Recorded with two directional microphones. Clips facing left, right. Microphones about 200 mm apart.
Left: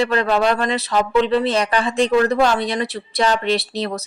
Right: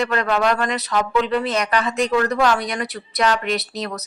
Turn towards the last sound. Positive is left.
turn(degrees=30)  # may be behind; listen again after turning